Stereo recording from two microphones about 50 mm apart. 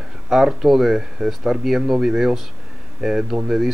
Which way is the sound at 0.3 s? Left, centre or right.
Centre.